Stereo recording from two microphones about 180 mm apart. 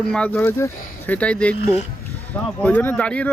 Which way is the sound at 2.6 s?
10° left (ahead or behind).